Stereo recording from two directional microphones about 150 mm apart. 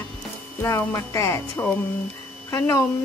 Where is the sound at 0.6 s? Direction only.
20° left (ahead or behind).